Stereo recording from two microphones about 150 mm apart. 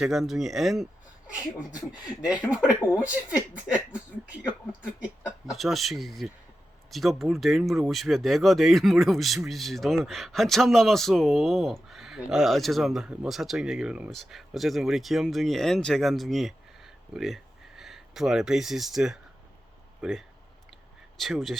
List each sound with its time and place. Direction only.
0.0 s speech: centre (ahead or behind)
2.9 s speech: 5° right (ahead or behind)
5.0 s speech: 5° right (ahead or behind)